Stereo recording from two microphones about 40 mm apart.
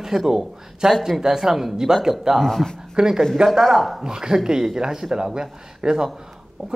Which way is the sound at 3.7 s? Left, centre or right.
Centre.